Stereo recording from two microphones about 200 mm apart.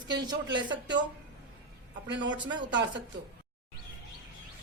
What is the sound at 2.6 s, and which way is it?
Speech, 60° right (ahead or behind).